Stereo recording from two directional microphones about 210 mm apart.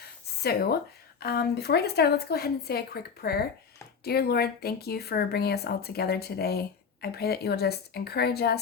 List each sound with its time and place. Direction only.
0.4 s speech: 50° left (ahead or behind)